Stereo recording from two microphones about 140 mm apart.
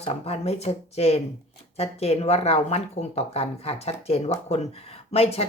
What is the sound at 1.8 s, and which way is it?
Speech, 45° left (ahead or behind).